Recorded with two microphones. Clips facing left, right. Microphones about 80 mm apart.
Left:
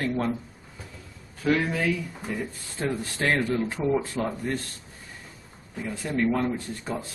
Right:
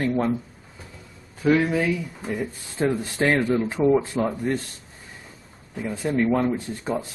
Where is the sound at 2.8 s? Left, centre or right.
Centre.